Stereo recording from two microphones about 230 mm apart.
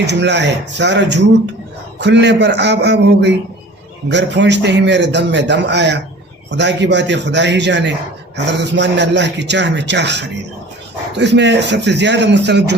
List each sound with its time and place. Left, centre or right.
0.0 s a man's voice: right